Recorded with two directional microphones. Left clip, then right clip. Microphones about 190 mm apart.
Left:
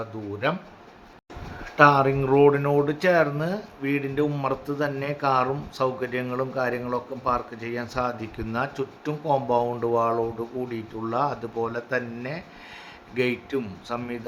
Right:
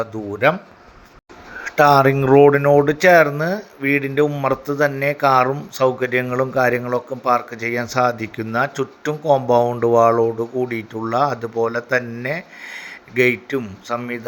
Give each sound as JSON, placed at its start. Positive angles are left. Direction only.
{"t": 0.0, "sound": "speech", "side_deg": -25}
{"t": 1.6, "sound": "speech", "side_deg": -30}